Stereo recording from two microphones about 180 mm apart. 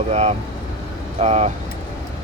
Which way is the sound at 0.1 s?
35° right (ahead or behind).